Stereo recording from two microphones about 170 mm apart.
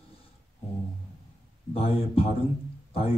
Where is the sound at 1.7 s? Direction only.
35° left (ahead or behind).